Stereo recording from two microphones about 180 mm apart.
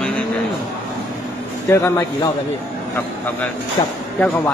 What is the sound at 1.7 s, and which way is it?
Speech, 15° left (ahead or behind).